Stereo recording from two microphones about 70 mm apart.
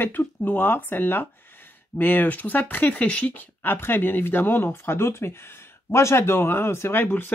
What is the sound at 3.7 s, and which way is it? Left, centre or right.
Speech, left.